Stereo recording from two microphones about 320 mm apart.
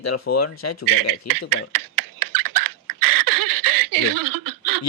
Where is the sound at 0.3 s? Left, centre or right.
Left.